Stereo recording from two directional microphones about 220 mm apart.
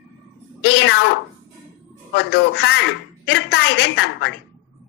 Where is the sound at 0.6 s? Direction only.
50° left (ahead or behind).